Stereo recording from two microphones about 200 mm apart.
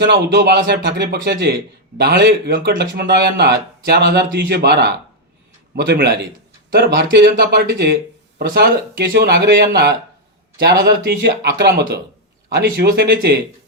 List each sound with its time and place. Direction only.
0.0 s speech: 60° right (ahead or behind)